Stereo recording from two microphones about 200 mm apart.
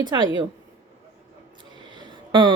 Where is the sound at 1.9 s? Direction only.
20° right (ahead or behind).